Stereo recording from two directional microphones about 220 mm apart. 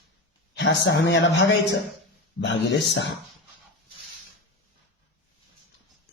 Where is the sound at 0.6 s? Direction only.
50° left (ahead or behind).